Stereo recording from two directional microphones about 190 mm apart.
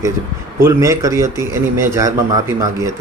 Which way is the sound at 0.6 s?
15° right (ahead or behind).